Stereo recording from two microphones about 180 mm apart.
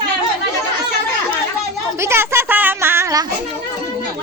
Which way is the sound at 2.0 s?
15° right (ahead or behind).